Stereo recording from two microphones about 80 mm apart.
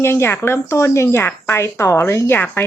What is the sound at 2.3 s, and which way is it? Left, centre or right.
Speech, centre.